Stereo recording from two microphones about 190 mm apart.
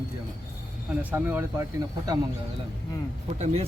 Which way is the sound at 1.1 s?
10° right (ahead or behind).